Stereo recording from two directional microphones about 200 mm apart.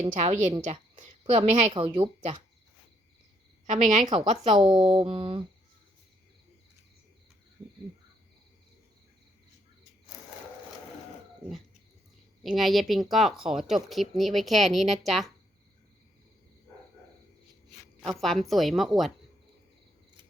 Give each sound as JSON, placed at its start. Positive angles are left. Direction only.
{"t": 0.0, "sound": "a woman's voice", "side_deg": -35}
{"t": 3.7, "sound": "speech", "side_deg": -35}
{"t": 12.4, "sound": "speech", "side_deg": 0}
{"t": 18.2, "sound": "speech", "side_deg": 0}